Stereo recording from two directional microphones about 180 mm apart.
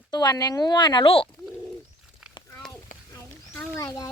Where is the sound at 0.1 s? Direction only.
20° left (ahead or behind).